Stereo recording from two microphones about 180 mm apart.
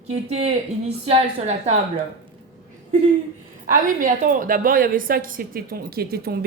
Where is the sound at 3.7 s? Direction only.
50° right (ahead or behind).